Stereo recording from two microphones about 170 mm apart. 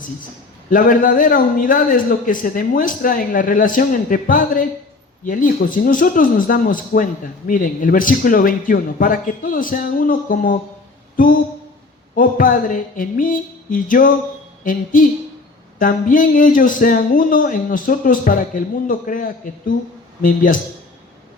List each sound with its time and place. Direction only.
0.7 s speech: 55° left (ahead or behind)
12.1 s speech: 55° left (ahead or behind)
14.6 s a sound: 50° left (ahead or behind)
15.8 s speech: 55° left (ahead or behind)